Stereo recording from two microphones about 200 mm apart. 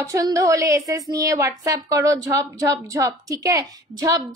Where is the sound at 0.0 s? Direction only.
15° right (ahead or behind).